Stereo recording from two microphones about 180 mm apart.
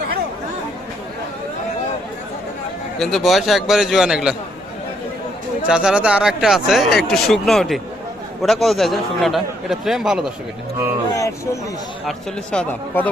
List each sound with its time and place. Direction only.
3.0 s speech: centre (ahead or behind)
5.6 s speech: 5° right (ahead or behind)
11.1 s speech: 20° left (ahead or behind)
12.0 s speech: 5° left (ahead or behind)